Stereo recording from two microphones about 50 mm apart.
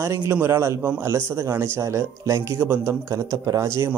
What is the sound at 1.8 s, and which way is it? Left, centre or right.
Speech, right.